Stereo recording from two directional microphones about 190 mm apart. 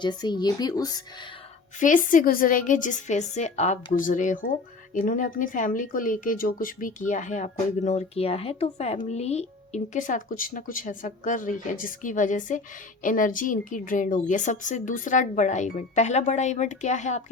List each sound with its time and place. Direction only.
0.0 s speech: 20° left (ahead or behind)
1.8 s speech: 45° left (ahead or behind)